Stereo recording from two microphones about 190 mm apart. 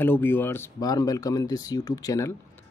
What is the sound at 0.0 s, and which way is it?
Speech, 10° left (ahead or behind).